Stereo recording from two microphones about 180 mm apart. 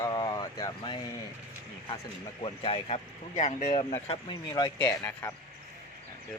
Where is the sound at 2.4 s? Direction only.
30° left (ahead or behind); by 5.3 s 15° left (ahead or behind).